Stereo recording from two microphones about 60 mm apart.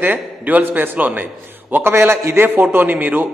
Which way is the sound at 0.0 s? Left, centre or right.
Right.